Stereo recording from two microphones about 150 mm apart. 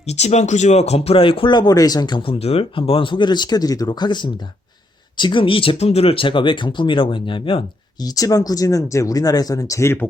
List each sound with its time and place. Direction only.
0.1 s speech: 45° left (ahead or behind)
8.0 s speech: 25° left (ahead or behind)